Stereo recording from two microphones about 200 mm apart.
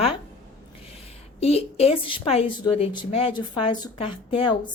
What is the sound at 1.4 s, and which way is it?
A woman's voice, 30° left (ahead or behind).